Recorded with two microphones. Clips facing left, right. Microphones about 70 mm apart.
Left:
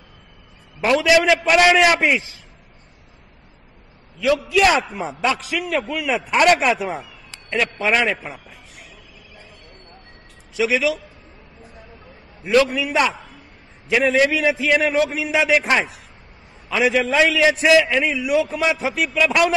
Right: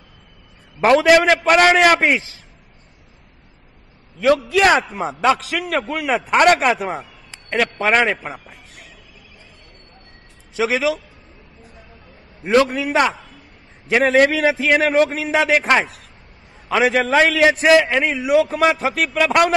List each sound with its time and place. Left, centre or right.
0.7 s a man's voice: right
4.5 s a man's voice: right
10.6 s a man's voice: right
12.4 s a man's voice: right